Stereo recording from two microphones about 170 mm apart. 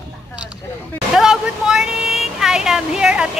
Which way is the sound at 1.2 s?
5° right (ahead or behind).